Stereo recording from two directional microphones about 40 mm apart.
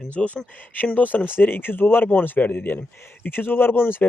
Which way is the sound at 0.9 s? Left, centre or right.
Left.